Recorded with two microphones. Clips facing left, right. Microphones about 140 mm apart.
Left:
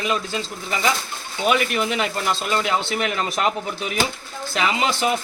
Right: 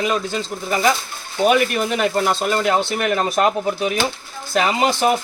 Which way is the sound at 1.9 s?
50° right (ahead or behind).